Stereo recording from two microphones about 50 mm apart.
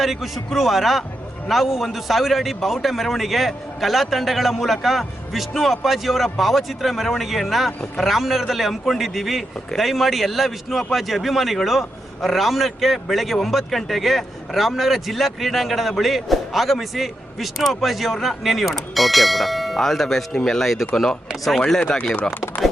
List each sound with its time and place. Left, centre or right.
0.0 s a man's voice: centre
8.1 s a man's voice: centre; by 22.1 s left